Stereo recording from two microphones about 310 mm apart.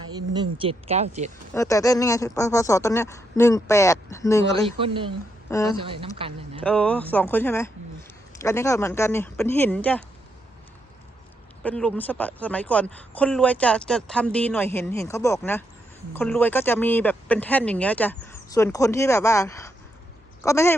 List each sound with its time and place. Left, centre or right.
0.2 s speech: centre
1.5 s speech: centre
4.8 s speech: centre
5.5 s speech: centre
5.8 s speech: centre
6.6 s speech: centre
11.6 s speech: centre